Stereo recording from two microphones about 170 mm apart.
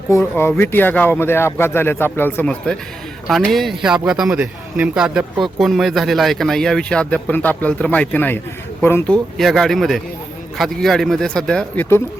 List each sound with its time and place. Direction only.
0.1 s a man's voice: 15° left (ahead or behind)
9.4 s a man's voice: centre (ahead or behind)